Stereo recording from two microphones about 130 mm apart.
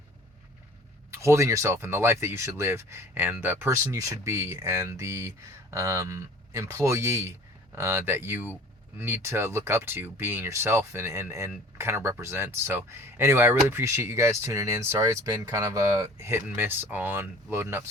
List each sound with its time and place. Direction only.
1.1 s speech: 20° right (ahead or behind)